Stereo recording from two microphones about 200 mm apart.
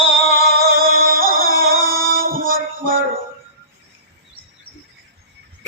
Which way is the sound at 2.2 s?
45° right (ahead or behind).